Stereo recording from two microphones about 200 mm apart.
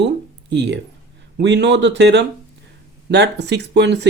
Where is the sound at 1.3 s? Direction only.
60° right (ahead or behind).